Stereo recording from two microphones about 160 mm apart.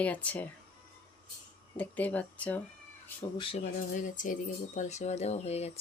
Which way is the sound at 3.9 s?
55° left (ahead or behind).